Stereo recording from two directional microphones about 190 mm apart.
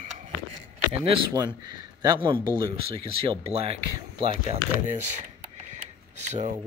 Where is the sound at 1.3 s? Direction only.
20° right (ahead or behind).